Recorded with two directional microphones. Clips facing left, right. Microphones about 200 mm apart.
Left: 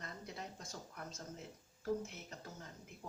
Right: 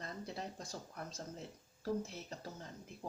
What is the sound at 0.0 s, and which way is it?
Speech, 35° right (ahead or behind).